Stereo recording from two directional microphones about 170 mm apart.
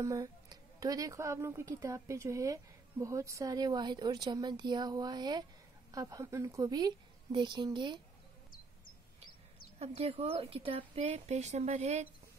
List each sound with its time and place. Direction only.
0.0 s a woman's voice: 20° right (ahead or behind)
9.8 s a woman's voice: 35° right (ahead or behind)